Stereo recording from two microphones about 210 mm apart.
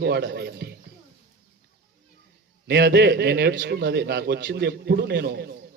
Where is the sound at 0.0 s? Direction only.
55° right (ahead or behind).